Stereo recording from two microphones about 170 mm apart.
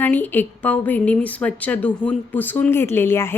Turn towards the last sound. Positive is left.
turn(degrees=15)  # may be behind; listen again after turning